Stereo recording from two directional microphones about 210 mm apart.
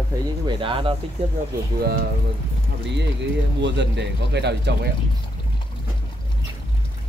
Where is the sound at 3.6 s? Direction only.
55° right (ahead or behind).